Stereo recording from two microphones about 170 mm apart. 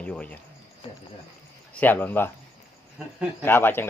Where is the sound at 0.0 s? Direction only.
5° left (ahead or behind).